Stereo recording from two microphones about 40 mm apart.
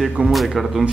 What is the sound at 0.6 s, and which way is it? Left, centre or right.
Speech, centre.